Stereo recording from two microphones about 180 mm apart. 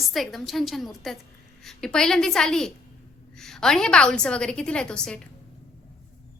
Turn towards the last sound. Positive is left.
turn(degrees=5)  # may be behind; listen again after turning